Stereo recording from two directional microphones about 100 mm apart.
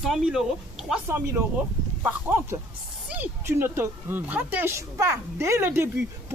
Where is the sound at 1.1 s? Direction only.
20° right (ahead or behind).